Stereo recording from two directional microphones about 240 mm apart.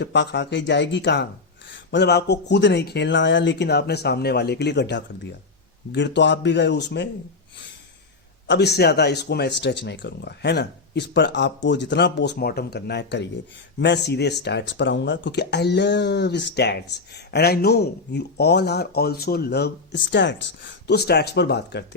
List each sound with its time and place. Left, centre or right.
0.0 s speech: left
8.4 s speech: left